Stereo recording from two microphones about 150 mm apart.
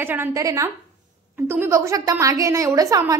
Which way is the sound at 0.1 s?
20° right (ahead or behind).